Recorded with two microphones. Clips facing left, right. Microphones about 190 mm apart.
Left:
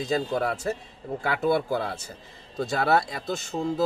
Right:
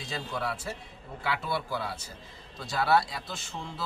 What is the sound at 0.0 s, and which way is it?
Speech, 45° left (ahead or behind).